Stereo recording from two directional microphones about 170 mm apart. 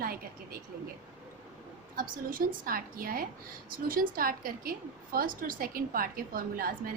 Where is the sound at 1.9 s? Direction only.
55° right (ahead or behind).